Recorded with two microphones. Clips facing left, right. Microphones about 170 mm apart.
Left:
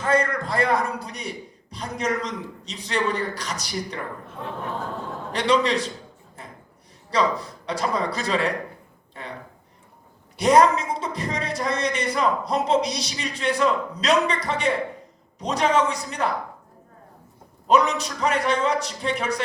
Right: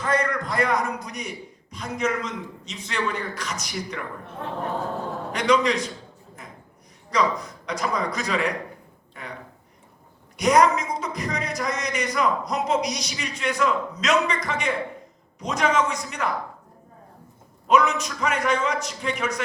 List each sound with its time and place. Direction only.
0.0 s a sound: 30° left (ahead or behind)
1.7 s speech: 35° left (ahead or behind)
5.3 s speech: 30° left (ahead or behind)
6.4 s a sound: 30° left (ahead or behind)
7.1 s speech: 30° left (ahead or behind)
10.3 s speech: 30° left (ahead or behind)
17.7 s speech: 30° left (ahead or behind)